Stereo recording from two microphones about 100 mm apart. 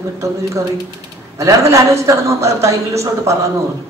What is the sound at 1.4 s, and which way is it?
Speech, 30° right (ahead or behind).